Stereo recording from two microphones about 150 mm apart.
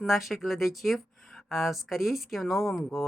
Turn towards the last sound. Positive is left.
turn(degrees=0)  # may be behind; listen again after turning